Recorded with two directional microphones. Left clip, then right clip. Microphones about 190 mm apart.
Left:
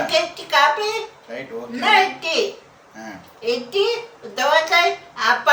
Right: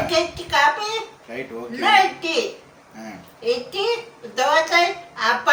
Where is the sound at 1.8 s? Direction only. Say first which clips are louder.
Even; 15° left (ahead or behind).